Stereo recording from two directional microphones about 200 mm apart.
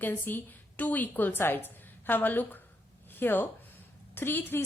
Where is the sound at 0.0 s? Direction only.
10° left (ahead or behind).